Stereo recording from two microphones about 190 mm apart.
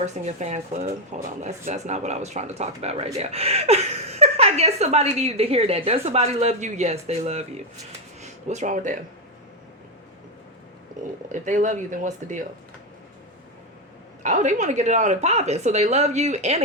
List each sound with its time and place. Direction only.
0.0 s speech: 40° right (ahead or behind)
11.3 s speech: 40° right (ahead or behind)
14.2 s speech: 40° right (ahead or behind)